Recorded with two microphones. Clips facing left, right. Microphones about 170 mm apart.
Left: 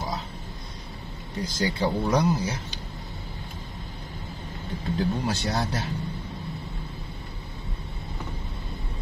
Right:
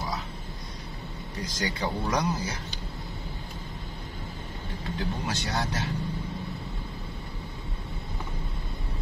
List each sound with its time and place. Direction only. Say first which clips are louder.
1.5 s speech: left 5 dB; 30° left (ahead or behind)
4.9 s speech: left 6 dB; 35° left (ahead or behind)